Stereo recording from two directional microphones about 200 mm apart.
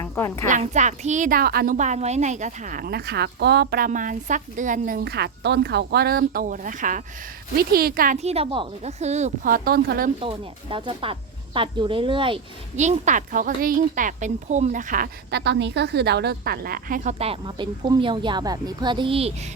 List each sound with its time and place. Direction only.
0.0 s a woman's voice: 15° left (ahead or behind)
0.4 s a woman's voice: 35° right (ahead or behind)
10.2 s speech: 25° right (ahead or behind)